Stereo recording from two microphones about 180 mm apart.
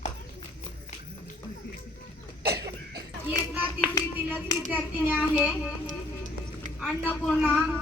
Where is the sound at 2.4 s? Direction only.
65° right (ahead or behind).